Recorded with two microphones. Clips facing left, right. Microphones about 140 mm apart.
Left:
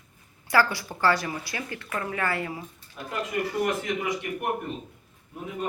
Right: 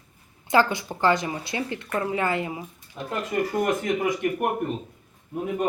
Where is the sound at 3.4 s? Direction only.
45° right (ahead or behind).